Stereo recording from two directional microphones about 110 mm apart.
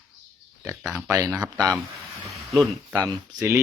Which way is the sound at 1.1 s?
25° right (ahead or behind).